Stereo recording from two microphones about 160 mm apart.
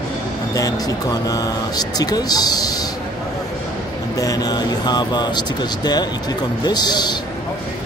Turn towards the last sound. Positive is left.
turn(degrees=25)  # may be behind; listen again after turning